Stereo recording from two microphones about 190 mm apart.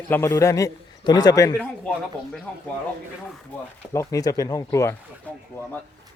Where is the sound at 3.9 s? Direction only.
15° left (ahead or behind).